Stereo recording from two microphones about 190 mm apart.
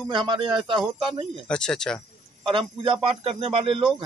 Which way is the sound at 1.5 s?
5° left (ahead or behind).